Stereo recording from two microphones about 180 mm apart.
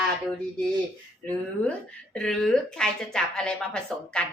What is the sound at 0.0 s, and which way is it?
A woman's voice, centre (ahead or behind).